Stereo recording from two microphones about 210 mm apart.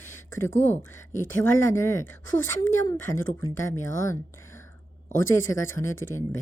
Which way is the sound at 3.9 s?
15° left (ahead or behind).